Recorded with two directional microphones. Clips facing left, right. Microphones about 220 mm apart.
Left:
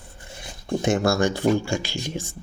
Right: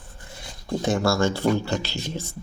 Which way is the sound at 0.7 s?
20° left (ahead or behind).